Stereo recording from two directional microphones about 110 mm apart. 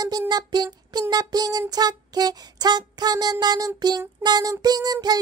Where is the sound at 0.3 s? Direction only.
40° right (ahead or behind).